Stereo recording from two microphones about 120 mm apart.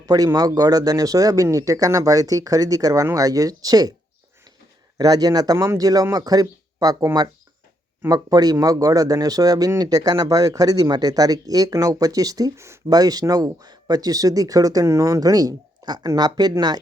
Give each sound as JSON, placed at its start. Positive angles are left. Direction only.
{"t": 0.0, "sound": "speech", "side_deg": -30}
{"t": 4.9, "sound": "speech", "side_deg": -35}